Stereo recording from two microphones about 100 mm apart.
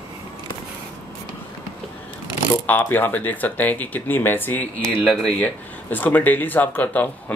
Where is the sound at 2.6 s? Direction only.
20° left (ahead or behind).